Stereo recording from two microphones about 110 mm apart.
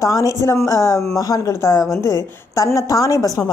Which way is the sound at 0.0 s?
30° left (ahead or behind).